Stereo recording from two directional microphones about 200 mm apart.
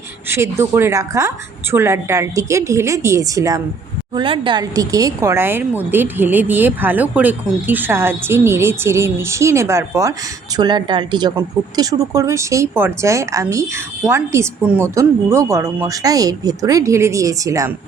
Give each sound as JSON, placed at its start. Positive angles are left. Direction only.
{"t": 0.3, "sound": "speech", "side_deg": -15}